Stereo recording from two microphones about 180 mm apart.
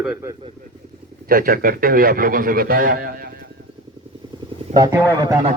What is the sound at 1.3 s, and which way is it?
A man's voice, 55° right (ahead or behind).